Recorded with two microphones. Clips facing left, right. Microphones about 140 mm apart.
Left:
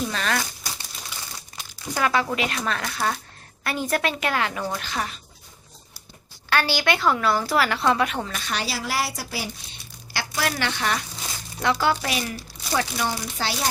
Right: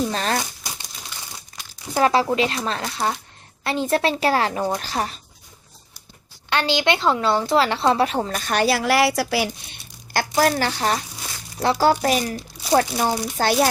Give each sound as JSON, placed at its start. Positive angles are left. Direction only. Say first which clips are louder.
{"t": 0.1, "sound": "speech", "louder": "right 3 dB", "side_deg": -35}
{"t": 2.0, "sound": "a woman's voice", "louder": "right 5 dB", "side_deg": -30}
{"t": 6.5, "sound": "a woman's voice", "louder": "right 2 dB", "side_deg": -20}
{"t": 10.1, "sound": "speech", "louder": "right 8 dB", "side_deg": -45}
{"t": 10.5, "sound": "speech", "louder": "right 4 dB", "side_deg": -35}
{"t": 13.3, "sound": "speech", "louder": "right 9 dB", "side_deg": -50}